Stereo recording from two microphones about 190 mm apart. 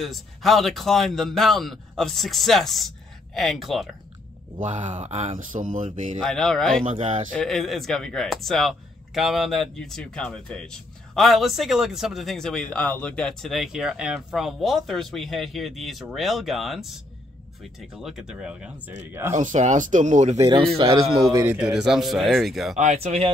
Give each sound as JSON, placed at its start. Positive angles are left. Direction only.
{"t": 0.0, "sound": "speech", "side_deg": 0}
{"t": 4.6, "sound": "speech", "side_deg": -40}
{"t": 6.2, "sound": "speech", "side_deg": 0}
{"t": 6.8, "sound": "speech", "side_deg": -35}
{"t": 7.3, "sound": "speech", "side_deg": 0}
{"t": 19.3, "sound": "speech", "side_deg": -40}
{"t": 20.3, "sound": "speech", "side_deg": -20}
{"t": 20.6, "sound": "speech", "side_deg": -30}
{"t": 20.9, "sound": "speech", "side_deg": -20}
{"t": 21.5, "sound": "speech", "side_deg": -5}
{"t": 22.8, "sound": "speech", "side_deg": -35}